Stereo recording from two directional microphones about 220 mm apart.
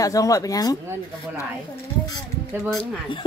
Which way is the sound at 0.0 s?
15° left (ahead or behind).